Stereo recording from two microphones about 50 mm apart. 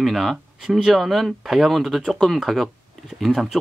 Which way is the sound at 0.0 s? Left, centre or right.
Centre.